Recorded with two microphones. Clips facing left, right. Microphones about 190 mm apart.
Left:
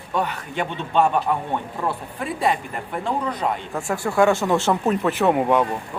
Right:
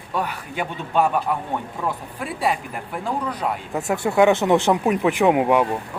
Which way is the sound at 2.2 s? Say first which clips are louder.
Left 2 dB; 5° right (ahead or behind).